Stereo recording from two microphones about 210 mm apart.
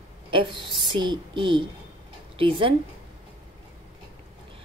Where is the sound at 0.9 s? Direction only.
20° right (ahead or behind).